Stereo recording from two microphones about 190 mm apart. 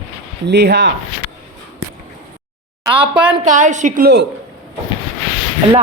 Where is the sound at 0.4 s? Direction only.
60° right (ahead or behind).